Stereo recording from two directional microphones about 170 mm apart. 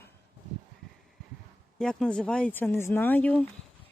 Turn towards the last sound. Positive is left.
turn(degrees=5)  # may be behind; listen again after turning